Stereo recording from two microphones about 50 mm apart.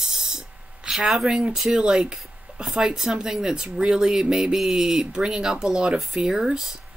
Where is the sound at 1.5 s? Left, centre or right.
Centre.